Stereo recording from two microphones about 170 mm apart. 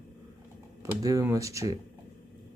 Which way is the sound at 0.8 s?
15° right (ahead or behind).